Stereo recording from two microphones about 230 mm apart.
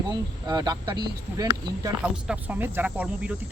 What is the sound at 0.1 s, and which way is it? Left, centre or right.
Speech, centre.